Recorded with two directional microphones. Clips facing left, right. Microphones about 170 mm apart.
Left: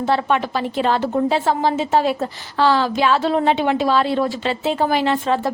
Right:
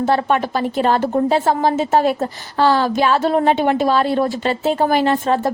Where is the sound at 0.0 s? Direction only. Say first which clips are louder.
Right 2 dB; 45° right (ahead or behind).